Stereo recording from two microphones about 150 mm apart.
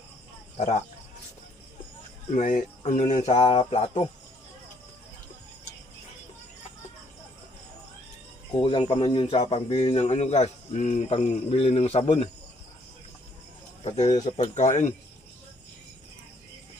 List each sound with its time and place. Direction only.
0.5 s speech: 50° left (ahead or behind)
2.3 s speech: 60° left (ahead or behind); by 4.1 s 40° left (ahead or behind)
8.6 s a man's voice: 35° left (ahead or behind)
13.8 s speech: 50° left (ahead or behind)